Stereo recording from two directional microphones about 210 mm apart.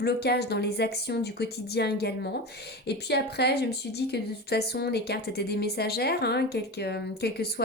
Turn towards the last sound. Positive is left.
turn(degrees=50)  # may be behind; listen again after turning